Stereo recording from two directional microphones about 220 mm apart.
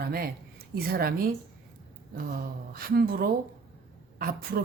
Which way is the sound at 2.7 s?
40° right (ahead or behind).